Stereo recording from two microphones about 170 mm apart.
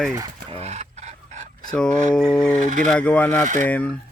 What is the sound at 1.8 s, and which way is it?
Speech, 5° left (ahead or behind).